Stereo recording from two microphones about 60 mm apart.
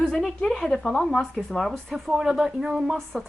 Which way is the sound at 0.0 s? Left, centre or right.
Centre.